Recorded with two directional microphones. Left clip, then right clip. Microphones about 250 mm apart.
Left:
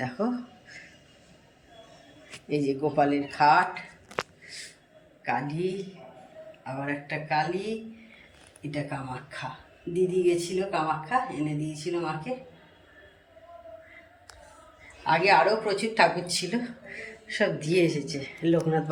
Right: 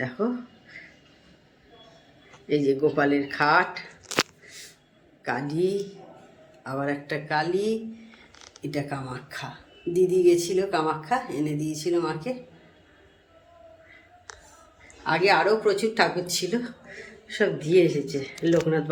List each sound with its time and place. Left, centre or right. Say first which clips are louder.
2.5 s speech: right 5 dB; centre
5.2 s speech: right 3 dB; centre
6.8 s speech: right 2 dB; centre
8.7 s speech: right 2 dB; centre
15.0 s speech: even; centre